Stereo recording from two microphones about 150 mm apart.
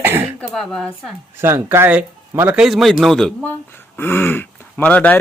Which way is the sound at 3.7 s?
15° left (ahead or behind).